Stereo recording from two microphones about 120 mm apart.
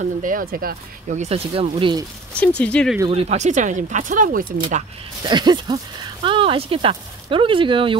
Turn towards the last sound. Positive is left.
turn(degrees=-45)  # may be behind; listen again after turning